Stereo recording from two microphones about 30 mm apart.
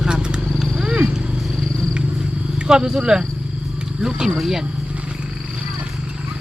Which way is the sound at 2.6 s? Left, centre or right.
Right.